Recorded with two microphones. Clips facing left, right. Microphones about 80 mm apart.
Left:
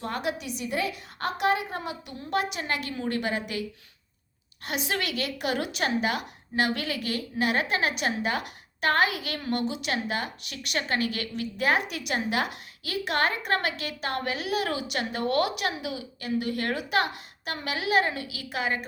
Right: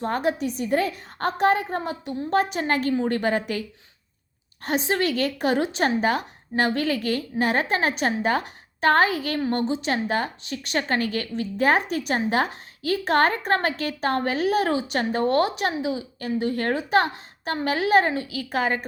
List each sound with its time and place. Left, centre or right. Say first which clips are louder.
0.0 s a woman's voice: right 7 dB; right
4.6 s a woman's voice: right 7 dB; right